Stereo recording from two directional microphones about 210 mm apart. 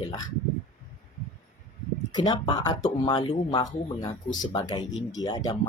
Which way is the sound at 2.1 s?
20° left (ahead or behind).